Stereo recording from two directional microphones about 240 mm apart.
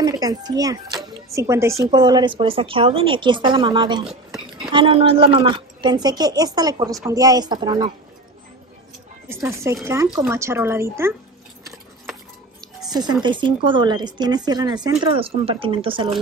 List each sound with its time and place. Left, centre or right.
0.0 s a woman's voice: centre
9.3 s a woman's voice: centre
12.9 s a woman's voice: centre